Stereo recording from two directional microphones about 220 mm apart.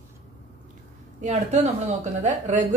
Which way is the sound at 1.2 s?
30° right (ahead or behind).